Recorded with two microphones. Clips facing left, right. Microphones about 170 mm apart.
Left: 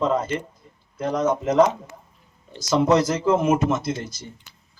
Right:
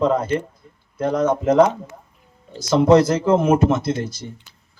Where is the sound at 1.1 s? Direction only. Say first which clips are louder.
Right 3 dB; 55° right (ahead or behind).